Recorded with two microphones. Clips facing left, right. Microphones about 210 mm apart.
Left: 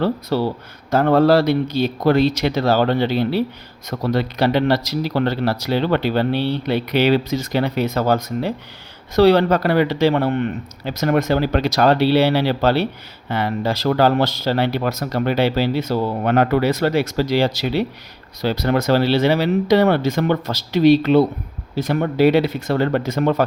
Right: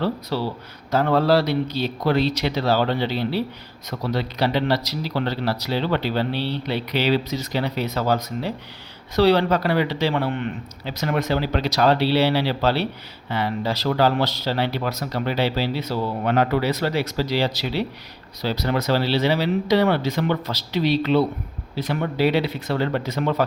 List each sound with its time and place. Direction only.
0.0 s speech: 50° left (ahead or behind)